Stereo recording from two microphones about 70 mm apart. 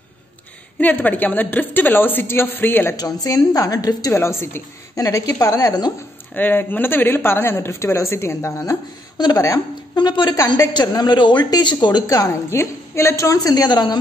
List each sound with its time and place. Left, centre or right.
0.7 s a woman's voice: left
3.0 s a woman's voice: left
4.1 s speech: left
4.9 s a woman's voice: left
6.3 s speech: left
9.9 s speech: left
10.9 s speech: left
12.3 s a woman's voice: left